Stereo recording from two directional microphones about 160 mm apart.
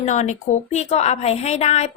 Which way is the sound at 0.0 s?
45° left (ahead or behind).